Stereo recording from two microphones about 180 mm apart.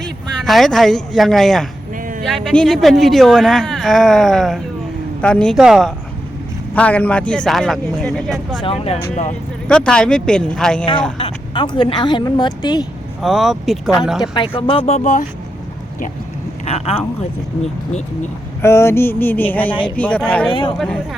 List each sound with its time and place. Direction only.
0.0 s a man's voice: centre (ahead or behind)
8.6 s speech: 35° left (ahead or behind)
9.6 s a man's voice: 5° left (ahead or behind)
11.2 s speech: 25° left (ahead or behind)
13.2 s a man's voice: centre (ahead or behind)
14.3 s speech: 30° left (ahead or behind); by 15.3 s 45° left (ahead or behind)
16.6 s speech: 35° left (ahead or behind)
18.6 s a sound: 15° left (ahead or behind)
20.5 s speech: 30° left (ahead or behind)
20.7 s a man's voice: centre (ahead or behind)